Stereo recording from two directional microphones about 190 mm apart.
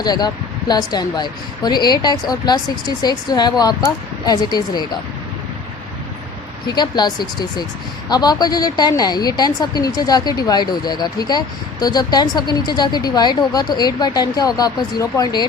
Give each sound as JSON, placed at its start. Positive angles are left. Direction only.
{"t": 0.0, "sound": "speech", "side_deg": 20}
{"t": 6.7, "sound": "speech", "side_deg": 20}